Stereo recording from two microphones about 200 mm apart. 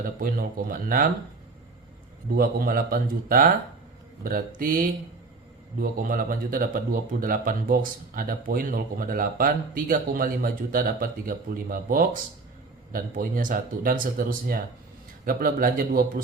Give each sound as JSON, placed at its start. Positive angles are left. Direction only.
{"t": 0.0, "sound": "speech", "side_deg": -45}
{"t": 2.3, "sound": "speech", "side_deg": -45}